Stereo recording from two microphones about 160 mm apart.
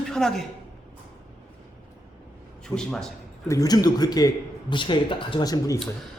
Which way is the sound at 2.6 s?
5° left (ahead or behind).